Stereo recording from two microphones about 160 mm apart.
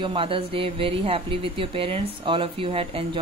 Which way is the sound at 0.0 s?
35° right (ahead or behind).